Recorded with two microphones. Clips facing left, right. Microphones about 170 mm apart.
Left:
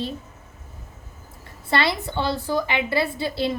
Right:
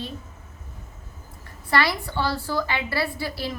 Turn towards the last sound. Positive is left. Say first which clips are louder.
# left 5 dB
turn(degrees=25)  # may be behind; listen again after turning